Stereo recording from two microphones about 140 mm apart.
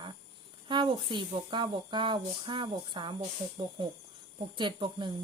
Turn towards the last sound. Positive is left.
turn(degrees=-35)  # may be behind; listen again after turning